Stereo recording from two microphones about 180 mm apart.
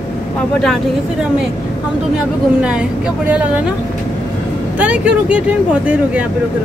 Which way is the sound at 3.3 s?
10° right (ahead or behind).